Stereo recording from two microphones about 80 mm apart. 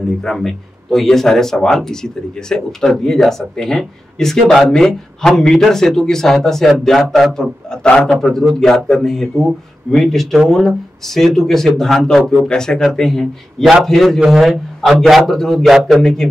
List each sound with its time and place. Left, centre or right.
0.2 s speech: centre